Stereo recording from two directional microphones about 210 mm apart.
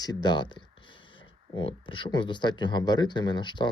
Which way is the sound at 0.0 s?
20° left (ahead or behind).